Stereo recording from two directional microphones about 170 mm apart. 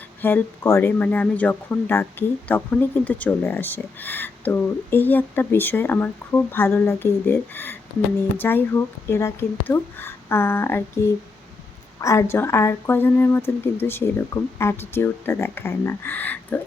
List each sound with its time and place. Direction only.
0.2 s speech: 10° left (ahead or behind)